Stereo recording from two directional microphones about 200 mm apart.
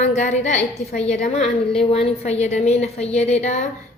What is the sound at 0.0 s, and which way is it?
A woman's voice, 40° left (ahead or behind).